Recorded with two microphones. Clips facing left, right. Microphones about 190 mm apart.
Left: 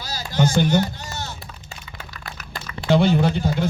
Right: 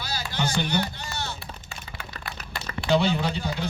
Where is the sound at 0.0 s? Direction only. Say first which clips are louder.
Left 7 dB; 40° left (ahead or behind).